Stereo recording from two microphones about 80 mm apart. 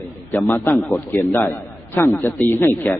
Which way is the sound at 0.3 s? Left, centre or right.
Left.